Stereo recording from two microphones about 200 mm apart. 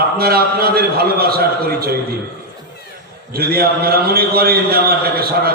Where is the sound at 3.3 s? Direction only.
50° right (ahead or behind).